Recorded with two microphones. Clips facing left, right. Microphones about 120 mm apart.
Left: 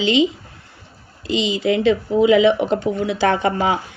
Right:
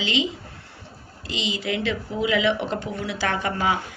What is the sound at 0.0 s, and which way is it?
Speech, 25° left (ahead or behind).